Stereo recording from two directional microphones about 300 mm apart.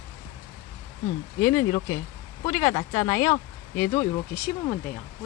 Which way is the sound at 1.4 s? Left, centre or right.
Centre.